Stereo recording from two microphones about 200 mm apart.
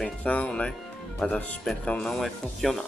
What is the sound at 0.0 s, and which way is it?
Speech, 5° left (ahead or behind).